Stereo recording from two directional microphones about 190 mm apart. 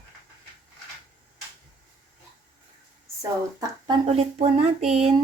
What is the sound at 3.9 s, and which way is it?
Speech, 30° right (ahead or behind).